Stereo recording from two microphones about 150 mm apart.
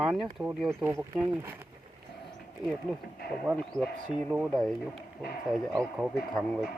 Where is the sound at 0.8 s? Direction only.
15° right (ahead or behind).